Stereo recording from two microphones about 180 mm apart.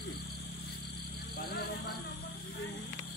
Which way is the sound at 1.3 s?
60° left (ahead or behind).